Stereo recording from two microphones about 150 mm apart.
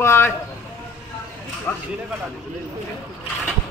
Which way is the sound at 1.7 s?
10° left (ahead or behind).